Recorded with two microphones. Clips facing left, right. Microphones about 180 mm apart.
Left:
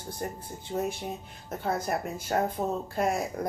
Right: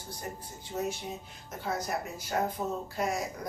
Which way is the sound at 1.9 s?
50° left (ahead or behind).